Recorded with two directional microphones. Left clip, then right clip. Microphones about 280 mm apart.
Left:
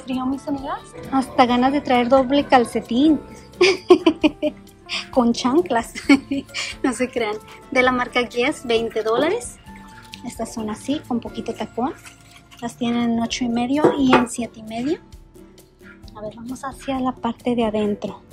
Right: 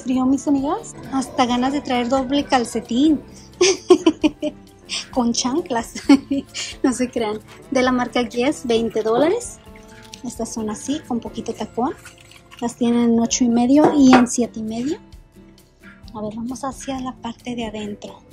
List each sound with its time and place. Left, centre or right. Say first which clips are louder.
0.0 s a woman's voice: right 5 dB; centre
16.1 s a woman's voice: right 4 dB; centre
17.0 s speech: left 6 dB; centre